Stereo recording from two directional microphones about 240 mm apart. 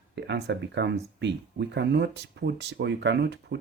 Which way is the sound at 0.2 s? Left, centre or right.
Right.